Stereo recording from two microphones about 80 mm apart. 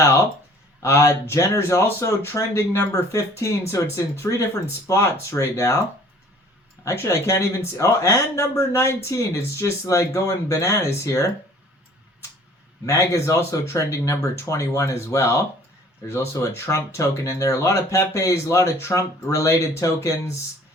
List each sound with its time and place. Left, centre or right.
0.0 s a sound: left
0.8 s speech: left
6.8 s speech: left
12.8 s speech: left